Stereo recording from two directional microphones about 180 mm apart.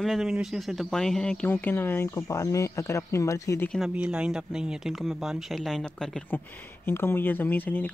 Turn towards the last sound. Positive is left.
turn(degrees=10)  # may be behind; listen again after turning